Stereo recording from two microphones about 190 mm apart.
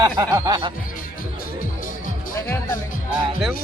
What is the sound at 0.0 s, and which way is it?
Speech, 20° right (ahead or behind).